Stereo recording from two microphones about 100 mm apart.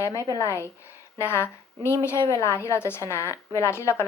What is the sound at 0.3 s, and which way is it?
A woman's voice, 30° left (ahead or behind).